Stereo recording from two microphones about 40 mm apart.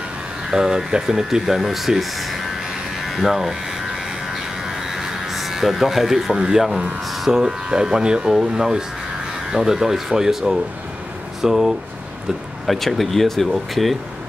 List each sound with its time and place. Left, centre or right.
0.5 s speech: centre
2.5 s electric shaver: centre
3.9 s a sound: centre
7.2 s speech: centre
12.6 s speech: centre